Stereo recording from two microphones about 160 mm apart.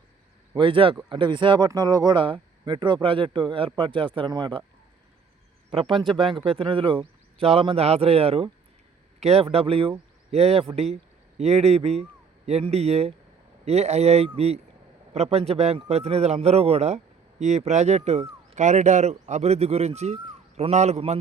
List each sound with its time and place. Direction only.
0.5 s speech: 30° right (ahead or behind)
6.2 s speech: 35° right (ahead or behind)